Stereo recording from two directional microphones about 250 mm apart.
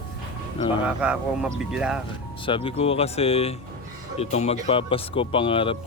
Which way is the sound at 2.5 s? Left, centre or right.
Left.